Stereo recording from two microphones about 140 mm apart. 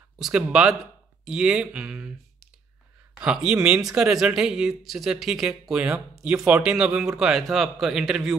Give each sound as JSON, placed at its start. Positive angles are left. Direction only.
{"t": 0.2, "sound": "speech", "side_deg": -5}